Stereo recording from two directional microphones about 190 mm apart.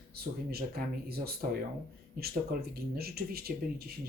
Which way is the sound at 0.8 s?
50° right (ahead or behind).